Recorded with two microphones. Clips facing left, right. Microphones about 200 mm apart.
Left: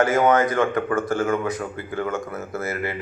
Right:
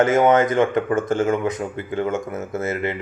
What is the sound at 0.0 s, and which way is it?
Speech, 20° right (ahead or behind).